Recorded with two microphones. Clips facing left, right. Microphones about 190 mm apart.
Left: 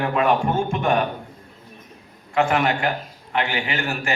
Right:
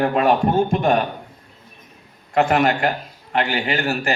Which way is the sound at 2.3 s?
40° right (ahead or behind).